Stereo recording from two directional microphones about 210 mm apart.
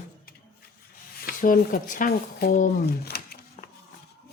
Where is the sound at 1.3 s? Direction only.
40° left (ahead or behind).